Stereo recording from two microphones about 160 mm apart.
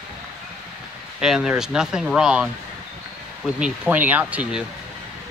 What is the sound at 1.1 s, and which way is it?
Speech, 5° right (ahead or behind).